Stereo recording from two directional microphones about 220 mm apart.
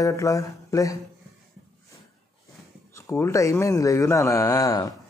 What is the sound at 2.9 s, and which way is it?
Speech, 15° left (ahead or behind).